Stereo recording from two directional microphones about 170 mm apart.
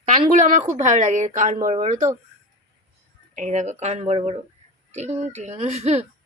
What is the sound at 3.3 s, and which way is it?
Speech, 45° right (ahead or behind).